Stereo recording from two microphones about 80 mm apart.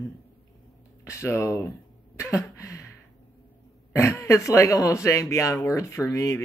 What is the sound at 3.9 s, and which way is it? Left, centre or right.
Speech, left.